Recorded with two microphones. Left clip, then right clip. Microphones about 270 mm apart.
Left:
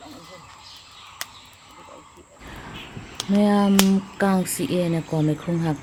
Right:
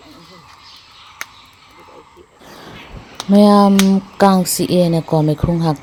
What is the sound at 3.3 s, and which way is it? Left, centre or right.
Speech, centre.